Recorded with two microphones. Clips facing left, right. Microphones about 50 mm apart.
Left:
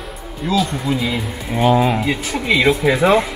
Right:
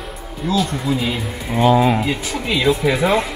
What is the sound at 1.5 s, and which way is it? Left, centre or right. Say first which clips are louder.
Speech: right 1 dB; centre.